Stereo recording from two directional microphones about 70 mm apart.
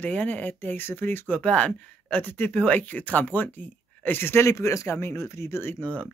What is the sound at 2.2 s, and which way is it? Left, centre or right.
Speech, left.